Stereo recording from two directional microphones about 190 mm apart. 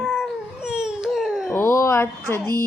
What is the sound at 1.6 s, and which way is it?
Speech, 15° left (ahead or behind).